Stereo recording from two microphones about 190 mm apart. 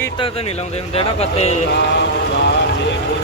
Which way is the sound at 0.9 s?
35° left (ahead or behind).